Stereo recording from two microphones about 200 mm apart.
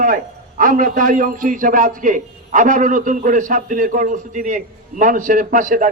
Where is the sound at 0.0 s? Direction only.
45° right (ahead or behind).